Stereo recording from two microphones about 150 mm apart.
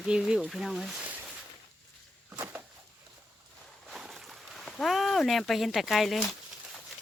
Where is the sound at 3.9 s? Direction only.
Centre (ahead or behind).